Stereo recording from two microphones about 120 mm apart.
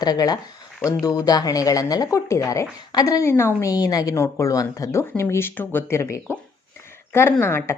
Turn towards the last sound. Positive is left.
turn(degrees=20)  # may be behind; listen again after turning